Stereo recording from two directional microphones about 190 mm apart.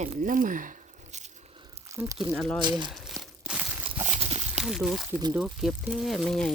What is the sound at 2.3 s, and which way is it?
Speech, centre (ahead or behind).